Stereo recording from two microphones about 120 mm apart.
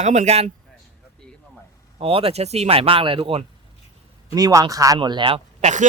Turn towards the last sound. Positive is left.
turn(degrees=-90)